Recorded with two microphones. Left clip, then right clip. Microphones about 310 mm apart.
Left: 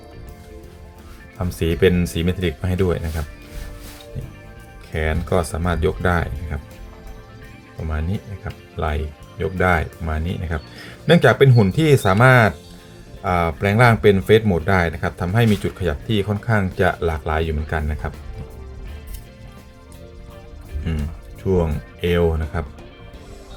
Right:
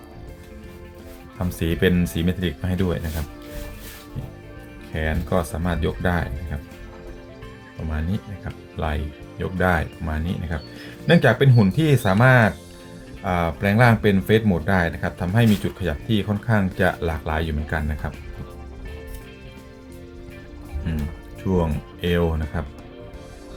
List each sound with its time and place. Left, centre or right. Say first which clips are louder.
1.4 s speech: left 5 dB; centre
4.9 s speech: left 3 dB; centre
8.8 s speech: left 3 dB; centre
21.5 s speech: left 3 dB; centre